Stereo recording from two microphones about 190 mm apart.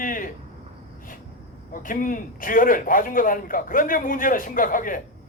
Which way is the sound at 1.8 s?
45° left (ahead or behind).